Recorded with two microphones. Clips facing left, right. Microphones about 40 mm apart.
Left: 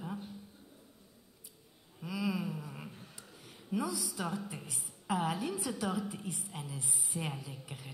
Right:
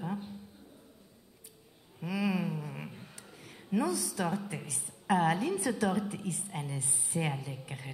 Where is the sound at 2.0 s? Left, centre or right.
Centre.